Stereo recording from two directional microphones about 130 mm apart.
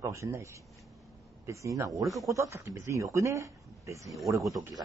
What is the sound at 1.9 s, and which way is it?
Speech, centre (ahead or behind).